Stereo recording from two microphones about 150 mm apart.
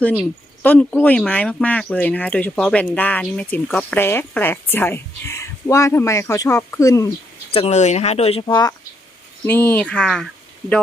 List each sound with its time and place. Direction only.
0.6 s speech: 10° left (ahead or behind)
7.5 s speech: 45° left (ahead or behind)
9.4 s speech: 15° left (ahead or behind)